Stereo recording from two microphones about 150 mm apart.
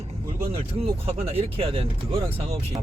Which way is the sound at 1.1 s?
40° right (ahead or behind).